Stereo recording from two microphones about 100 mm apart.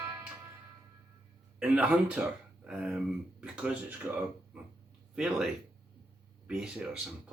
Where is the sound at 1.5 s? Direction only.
15° right (ahead or behind).